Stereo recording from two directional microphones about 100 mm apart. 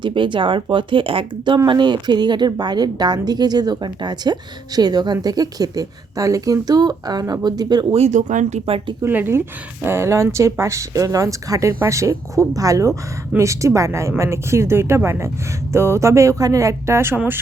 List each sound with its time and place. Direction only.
0.0 s speech: 55° right (ahead or behind)
1.5 s a woman's voice: 50° right (ahead or behind)
7.9 s speech: 90° right
9.0 s speech: 20° right (ahead or behind)